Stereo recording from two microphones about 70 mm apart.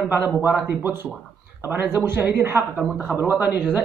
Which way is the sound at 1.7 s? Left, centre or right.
Right.